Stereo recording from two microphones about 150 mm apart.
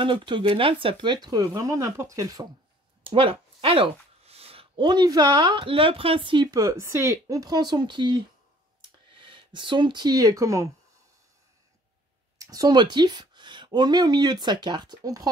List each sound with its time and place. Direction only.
0.0 s speech: 35° right (ahead or behind)
3.0 s speech: 35° right (ahead or behind); by 10.7 s 20° right (ahead or behind)
12.4 s a woman's voice: 25° right (ahead or behind)